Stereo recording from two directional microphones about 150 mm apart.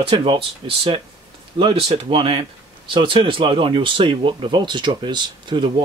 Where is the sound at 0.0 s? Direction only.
40° right (ahead or behind).